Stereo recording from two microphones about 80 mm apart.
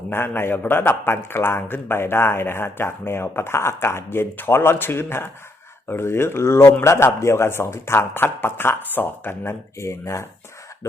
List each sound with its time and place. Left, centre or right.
0.1 s a man's voice: left